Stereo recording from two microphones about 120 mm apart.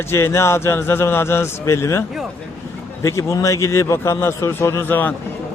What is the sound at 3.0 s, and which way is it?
A man's voice, 25° left (ahead or behind).